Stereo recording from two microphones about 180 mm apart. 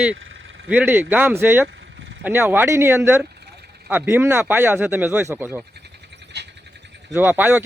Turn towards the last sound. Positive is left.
turn(degrees=-10)  # may be behind; listen again after turning